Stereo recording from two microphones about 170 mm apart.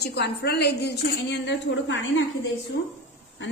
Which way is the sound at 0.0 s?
75° left (ahead or behind).